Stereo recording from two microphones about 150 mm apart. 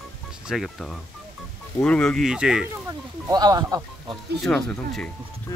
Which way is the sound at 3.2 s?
25° right (ahead or behind).